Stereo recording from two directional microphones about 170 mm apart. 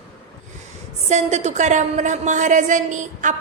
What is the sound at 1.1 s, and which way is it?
A woman's voice, 40° right (ahead or behind).